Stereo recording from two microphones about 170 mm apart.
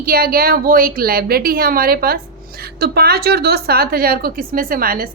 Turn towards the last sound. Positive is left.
turn(degrees=-60)  # may be behind; listen again after turning